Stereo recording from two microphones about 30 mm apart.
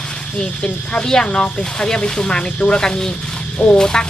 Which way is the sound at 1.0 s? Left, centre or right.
Left.